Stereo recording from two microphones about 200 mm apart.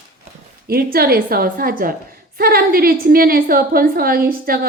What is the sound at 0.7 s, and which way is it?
A woman's voice, 50° right (ahead or behind).